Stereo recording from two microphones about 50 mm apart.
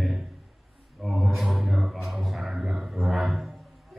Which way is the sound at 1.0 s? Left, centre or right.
Centre.